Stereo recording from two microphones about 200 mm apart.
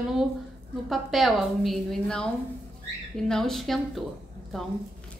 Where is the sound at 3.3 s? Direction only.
Centre (ahead or behind).